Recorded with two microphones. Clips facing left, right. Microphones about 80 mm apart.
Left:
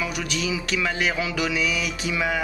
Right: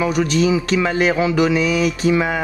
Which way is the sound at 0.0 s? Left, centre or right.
Right.